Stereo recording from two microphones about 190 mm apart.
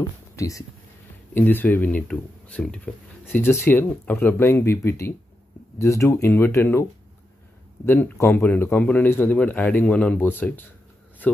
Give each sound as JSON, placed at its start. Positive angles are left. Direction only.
{"t": 0.4, "sound": "a man's voice", "side_deg": 15}